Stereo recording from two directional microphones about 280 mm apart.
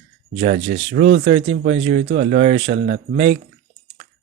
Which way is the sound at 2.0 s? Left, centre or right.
Right.